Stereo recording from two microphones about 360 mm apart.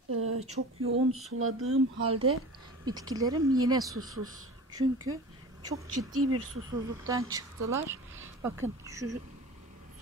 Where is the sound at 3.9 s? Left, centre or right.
Right.